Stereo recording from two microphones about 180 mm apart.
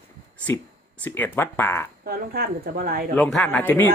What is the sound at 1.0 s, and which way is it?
Speech, 10° left (ahead or behind).